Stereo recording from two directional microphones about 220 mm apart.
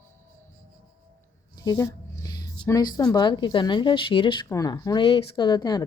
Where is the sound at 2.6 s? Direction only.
15° left (ahead or behind).